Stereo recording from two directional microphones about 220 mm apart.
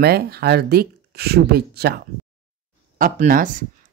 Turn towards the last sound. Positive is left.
turn(degrees=-35)  # may be behind; listen again after turning